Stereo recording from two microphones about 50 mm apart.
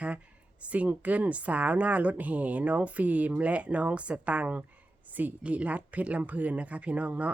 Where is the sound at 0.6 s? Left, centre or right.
Right.